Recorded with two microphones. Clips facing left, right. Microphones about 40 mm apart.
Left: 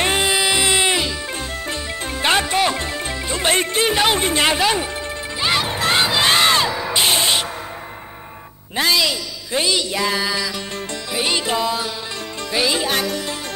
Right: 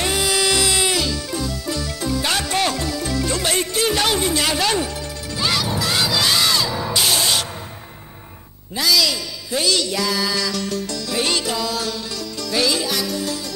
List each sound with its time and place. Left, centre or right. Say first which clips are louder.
0.0 s music: left 3 dB; left
0.3 s music: left 1 dB; left
1.3 s music: right 1 dB; left
4.2 s music: left 3 dB; left
4.6 s speech: left 1 dB; centre
5.4 s crowd: left 2 dB; left
6.7 s music: left 2 dB; left
8.7 s speech: left 1 dB; left
9.8 s music: left 1 dB; left
11.1 s music: left 1 dB; centre
11.4 s music: left 2 dB; left
12.8 s music: left 2 dB; left